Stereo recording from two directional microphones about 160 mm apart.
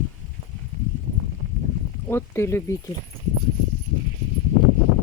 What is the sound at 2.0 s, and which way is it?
Speech, 15° left (ahead or behind).